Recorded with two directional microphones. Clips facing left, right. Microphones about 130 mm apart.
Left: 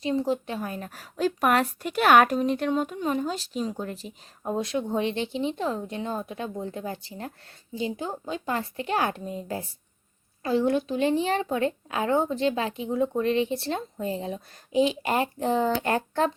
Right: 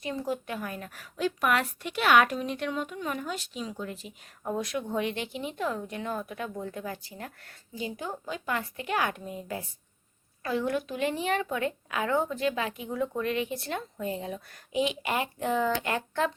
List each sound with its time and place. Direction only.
0.0 s speech: 25° left (ahead or behind)
3.0 s speech: 30° left (ahead or behind)
4.4 s speech: 25° left (ahead or behind)